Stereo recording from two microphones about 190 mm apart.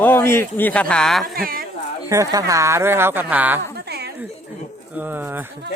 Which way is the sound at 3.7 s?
55° right (ahead or behind).